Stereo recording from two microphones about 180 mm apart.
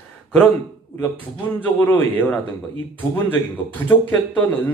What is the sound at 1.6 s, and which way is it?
Speech, 10° left (ahead or behind).